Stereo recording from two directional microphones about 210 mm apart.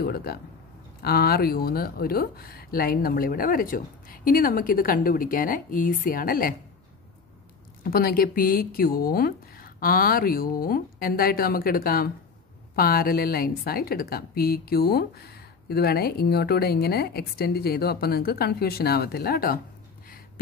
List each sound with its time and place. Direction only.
0.0 s a woman's voice: 50° left (ahead or behind)
7.8 s a woman's voice: 45° left (ahead or behind)